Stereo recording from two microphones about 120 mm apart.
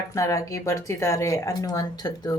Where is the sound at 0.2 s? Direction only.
25° left (ahead or behind).